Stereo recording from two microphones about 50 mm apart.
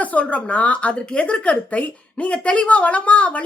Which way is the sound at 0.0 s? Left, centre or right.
Left.